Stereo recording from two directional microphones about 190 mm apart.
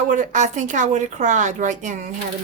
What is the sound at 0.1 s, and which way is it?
A woman's voice, 40° right (ahead or behind).